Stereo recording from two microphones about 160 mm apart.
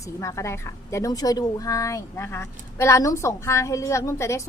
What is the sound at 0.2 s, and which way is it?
A woman's voice, 20° left (ahead or behind).